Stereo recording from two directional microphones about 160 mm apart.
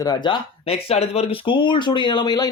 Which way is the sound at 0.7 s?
40° left (ahead or behind).